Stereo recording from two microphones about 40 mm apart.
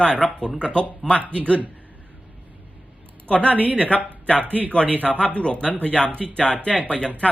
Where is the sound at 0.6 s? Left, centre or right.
Left.